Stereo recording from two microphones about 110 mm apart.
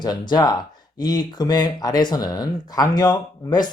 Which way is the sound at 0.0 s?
40° left (ahead or behind).